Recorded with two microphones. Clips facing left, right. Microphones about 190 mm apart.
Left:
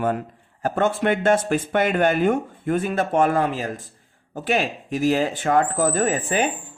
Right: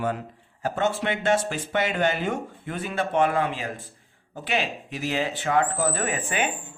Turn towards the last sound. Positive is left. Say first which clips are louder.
# left 6 dB
turn(degrees=35)  # may be behind; listen again after turning